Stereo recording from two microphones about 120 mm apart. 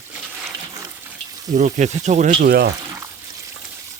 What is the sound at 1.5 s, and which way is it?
Speech, 85° right.